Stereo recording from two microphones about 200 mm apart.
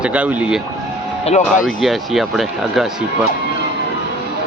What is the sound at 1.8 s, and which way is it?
Speech, centre (ahead or behind).